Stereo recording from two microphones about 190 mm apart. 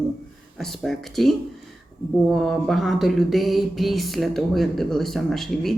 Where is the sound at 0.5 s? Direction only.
Centre (ahead or behind).